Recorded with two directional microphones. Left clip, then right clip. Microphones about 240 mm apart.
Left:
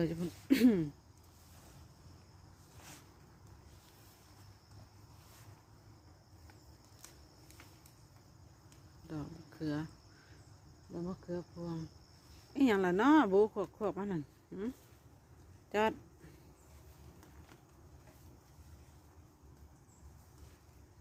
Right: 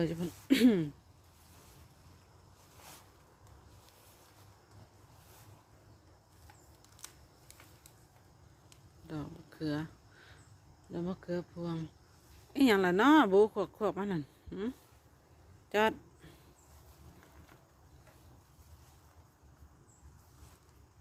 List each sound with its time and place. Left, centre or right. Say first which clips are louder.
0.0 s speech: right 2 dB; centre
7.0 s a sound: right 5 dB; right
9.0 s speech: right 2 dB; centre
10.9 s speech: right 4 dB; centre
12.5 s speech: right 3 dB; centre
15.7 s a sound: right 3 dB; centre